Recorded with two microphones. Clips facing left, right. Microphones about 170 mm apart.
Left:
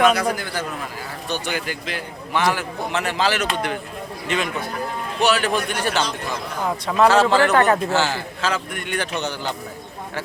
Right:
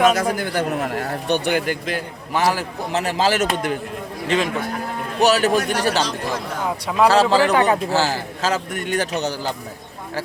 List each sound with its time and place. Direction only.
0.0 s a man's voice: 45° right (ahead or behind)
5.2 s a man's voice: 40° right (ahead or behind)
6.8 s speech: 10° right (ahead or behind)
7.1 s a man's voice: 35° right (ahead or behind)
7.5 s speech: 15° right (ahead or behind)
7.9 s a man's voice: 35° right (ahead or behind)